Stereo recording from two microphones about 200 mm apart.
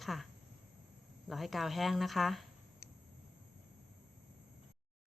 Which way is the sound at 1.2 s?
Centre (ahead or behind).